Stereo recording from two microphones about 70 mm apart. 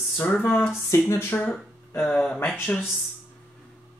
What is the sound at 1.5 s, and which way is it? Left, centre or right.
Speech, centre.